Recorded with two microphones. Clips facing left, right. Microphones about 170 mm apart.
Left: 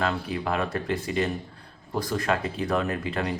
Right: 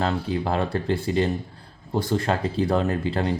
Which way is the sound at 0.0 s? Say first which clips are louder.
Right 3 dB; 30° right (ahead or behind).